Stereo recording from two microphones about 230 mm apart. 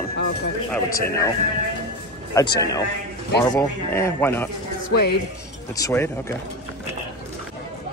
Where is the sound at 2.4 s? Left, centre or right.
Centre.